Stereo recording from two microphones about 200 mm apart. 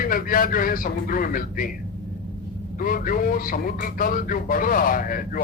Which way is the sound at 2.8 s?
45° left (ahead or behind).